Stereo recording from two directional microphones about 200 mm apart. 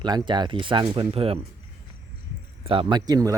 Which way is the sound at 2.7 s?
25° right (ahead or behind).